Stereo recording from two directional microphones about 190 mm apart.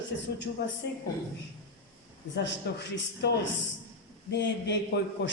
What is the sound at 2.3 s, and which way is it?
A man's voice, 65° left (ahead or behind).